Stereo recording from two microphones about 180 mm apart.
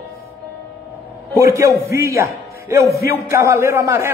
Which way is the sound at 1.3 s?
15° right (ahead or behind).